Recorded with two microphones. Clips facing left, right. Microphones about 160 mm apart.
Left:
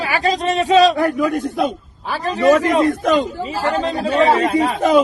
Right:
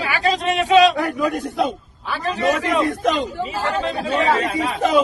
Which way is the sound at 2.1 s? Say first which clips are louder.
Left 6 dB; 40° left (ahead or behind).